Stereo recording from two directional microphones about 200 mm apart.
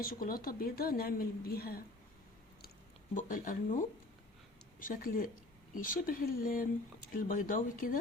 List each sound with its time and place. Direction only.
0.0 s speech: 45° left (ahead or behind)
3.2 s speech: 40° left (ahead or behind)
4.8 s speech: 45° left (ahead or behind)